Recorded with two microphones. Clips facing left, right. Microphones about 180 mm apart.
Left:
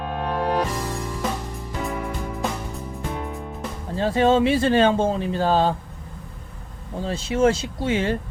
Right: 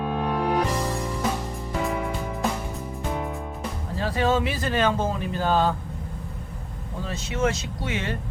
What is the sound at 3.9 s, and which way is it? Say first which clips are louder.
Speech: left 5 dB; 25° left (ahead or behind).